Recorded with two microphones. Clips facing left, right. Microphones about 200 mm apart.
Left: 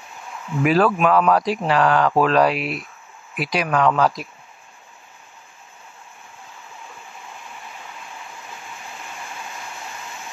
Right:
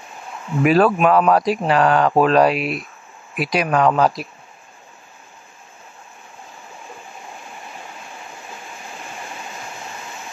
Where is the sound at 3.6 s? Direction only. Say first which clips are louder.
Right 2 dB; 30° right (ahead or behind).